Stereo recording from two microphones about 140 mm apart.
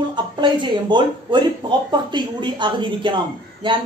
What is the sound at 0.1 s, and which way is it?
Speech, 35° right (ahead or behind).